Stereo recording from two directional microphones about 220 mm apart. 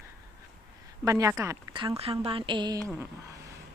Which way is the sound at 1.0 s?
15° right (ahead or behind).